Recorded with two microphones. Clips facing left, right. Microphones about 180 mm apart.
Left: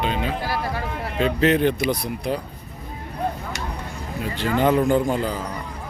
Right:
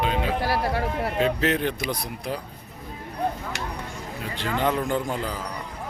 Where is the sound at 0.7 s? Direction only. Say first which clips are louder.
Right 3 dB; 70° right (ahead or behind).